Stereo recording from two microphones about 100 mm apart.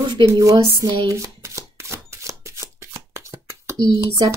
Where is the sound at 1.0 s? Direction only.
30° right (ahead or behind).